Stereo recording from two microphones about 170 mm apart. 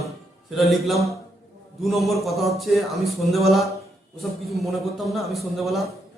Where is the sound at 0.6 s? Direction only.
Centre (ahead or behind).